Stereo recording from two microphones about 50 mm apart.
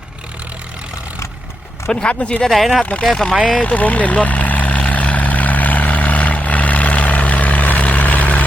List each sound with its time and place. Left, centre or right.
1.9 s speech: left
2.4 s speech: centre
3.0 s speech: centre
3.6 s vehicle: left